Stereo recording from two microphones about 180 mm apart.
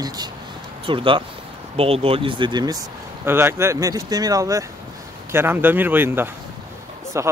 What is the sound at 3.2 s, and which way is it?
Speech, 15° right (ahead or behind).